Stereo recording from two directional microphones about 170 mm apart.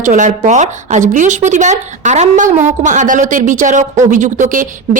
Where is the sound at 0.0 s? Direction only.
45° right (ahead or behind).